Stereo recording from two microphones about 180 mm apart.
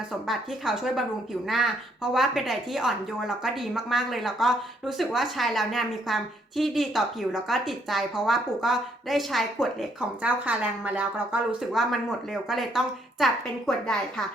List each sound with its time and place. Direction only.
0.3 s a woman's voice: centre (ahead or behind)